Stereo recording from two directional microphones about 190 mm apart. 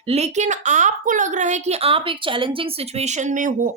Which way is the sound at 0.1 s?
35° right (ahead or behind).